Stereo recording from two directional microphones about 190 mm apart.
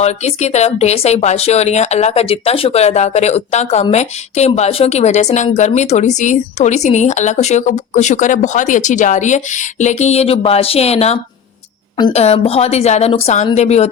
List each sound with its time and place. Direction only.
0.0 s a woman's voice: 35° left (ahead or behind)